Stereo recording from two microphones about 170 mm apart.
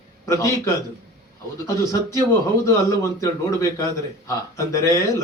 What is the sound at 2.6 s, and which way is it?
A man's voice, 15° left (ahead or behind).